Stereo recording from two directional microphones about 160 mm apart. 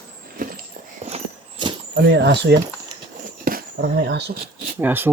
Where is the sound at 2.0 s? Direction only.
90° right.